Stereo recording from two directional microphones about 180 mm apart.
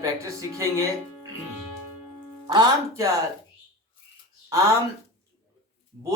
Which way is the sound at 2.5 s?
25° right (ahead or behind).